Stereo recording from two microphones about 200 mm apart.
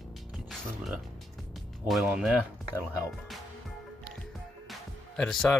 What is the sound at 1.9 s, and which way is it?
Speech, 5° right (ahead or behind).